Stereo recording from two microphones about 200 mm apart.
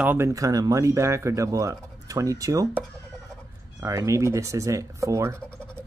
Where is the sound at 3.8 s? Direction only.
15° right (ahead or behind).